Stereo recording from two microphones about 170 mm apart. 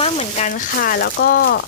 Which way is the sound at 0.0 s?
40° left (ahead or behind).